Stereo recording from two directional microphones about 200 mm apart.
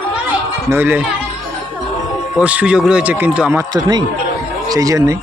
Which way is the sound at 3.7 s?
20° right (ahead or behind).